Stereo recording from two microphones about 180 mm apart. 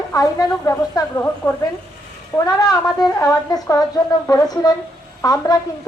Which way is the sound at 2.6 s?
20° left (ahead or behind).